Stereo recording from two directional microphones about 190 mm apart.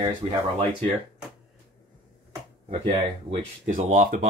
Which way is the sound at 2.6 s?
35° right (ahead or behind).